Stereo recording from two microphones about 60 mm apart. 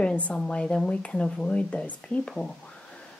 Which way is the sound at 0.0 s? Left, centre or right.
Centre.